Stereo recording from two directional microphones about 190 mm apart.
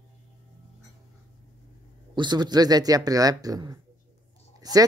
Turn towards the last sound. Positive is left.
turn(degrees=-20)  # may be behind; listen again after turning